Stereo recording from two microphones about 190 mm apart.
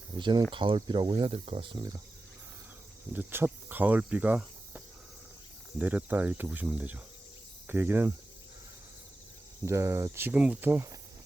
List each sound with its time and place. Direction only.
0.2 s speech: 25° right (ahead or behind)
3.1 s speech: 10° right (ahead or behind)
5.8 s speech: 10° right (ahead or behind)
9.6 s speech: 15° right (ahead or behind)